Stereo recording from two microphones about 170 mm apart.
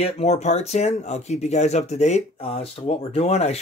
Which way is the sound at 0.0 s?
40° left (ahead or behind).